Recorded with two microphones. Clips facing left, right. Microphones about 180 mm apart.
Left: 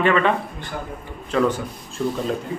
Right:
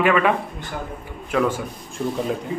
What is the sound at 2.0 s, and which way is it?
Speech, 20° right (ahead or behind).